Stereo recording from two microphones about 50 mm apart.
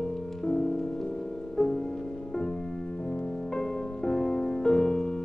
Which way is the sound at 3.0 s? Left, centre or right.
Left.